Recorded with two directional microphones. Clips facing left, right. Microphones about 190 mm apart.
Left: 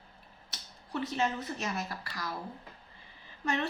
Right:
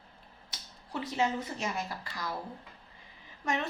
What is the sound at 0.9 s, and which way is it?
Speech, 15° right (ahead or behind).